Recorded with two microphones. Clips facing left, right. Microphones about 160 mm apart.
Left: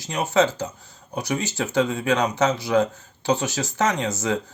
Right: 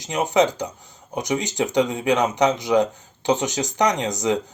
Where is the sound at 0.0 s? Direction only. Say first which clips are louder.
Right 1 dB; 20° right (ahead or behind).